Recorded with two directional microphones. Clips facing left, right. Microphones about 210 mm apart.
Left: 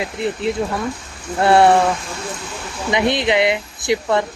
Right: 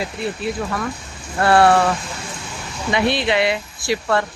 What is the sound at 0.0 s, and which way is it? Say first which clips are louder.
Speech: left 3 dB; 20° left (ahead or behind).